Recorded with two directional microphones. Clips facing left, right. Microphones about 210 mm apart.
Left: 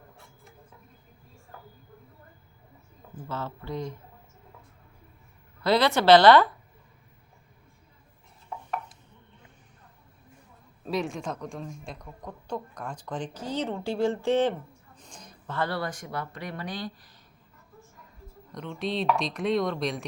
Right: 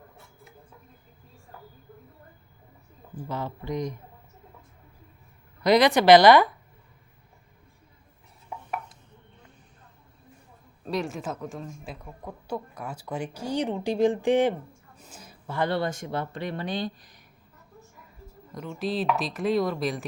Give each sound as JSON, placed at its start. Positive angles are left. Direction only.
{"t": 3.2, "sound": "speech", "side_deg": -15}
{"t": 5.6, "sound": "speech", "side_deg": -15}
{"t": 10.8, "sound": "speech", "side_deg": 0}
{"t": 18.5, "sound": "speech", "side_deg": -5}